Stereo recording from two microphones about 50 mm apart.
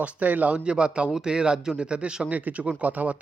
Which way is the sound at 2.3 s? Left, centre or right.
Right.